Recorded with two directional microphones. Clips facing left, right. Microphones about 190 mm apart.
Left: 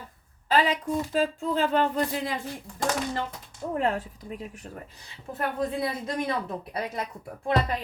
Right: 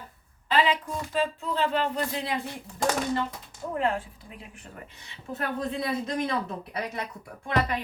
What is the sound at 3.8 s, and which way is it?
A woman's voice, 40° left (ahead or behind).